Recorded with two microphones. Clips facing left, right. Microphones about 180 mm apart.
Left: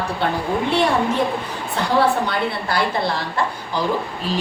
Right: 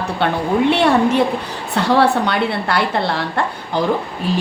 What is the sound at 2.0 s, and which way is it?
A woman's voice, 65° right (ahead or behind).